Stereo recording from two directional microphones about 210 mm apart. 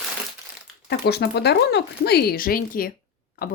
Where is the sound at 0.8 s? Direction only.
50° left (ahead or behind).